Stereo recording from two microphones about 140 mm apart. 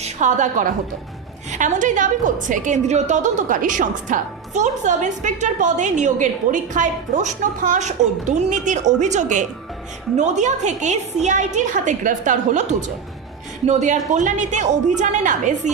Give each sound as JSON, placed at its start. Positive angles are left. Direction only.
{"t": 0.0, "sound": "a woman's voice", "side_deg": -60}